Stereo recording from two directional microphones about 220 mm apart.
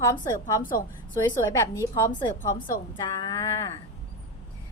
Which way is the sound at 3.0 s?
15° left (ahead or behind).